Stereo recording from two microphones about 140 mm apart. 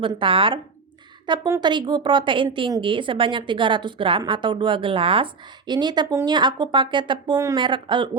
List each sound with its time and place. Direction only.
0.2 s a woman's voice: 40° right (ahead or behind)